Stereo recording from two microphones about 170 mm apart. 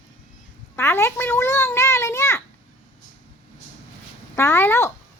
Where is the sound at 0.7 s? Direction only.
15° left (ahead or behind).